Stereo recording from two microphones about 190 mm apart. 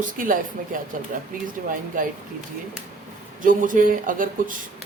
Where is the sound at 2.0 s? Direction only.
45° right (ahead or behind).